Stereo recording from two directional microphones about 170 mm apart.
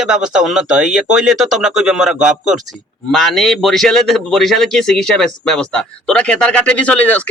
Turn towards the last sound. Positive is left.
turn(degrees=10)  # may be behind; listen again after turning